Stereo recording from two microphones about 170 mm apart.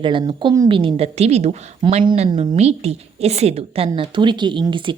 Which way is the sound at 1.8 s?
30° right (ahead or behind).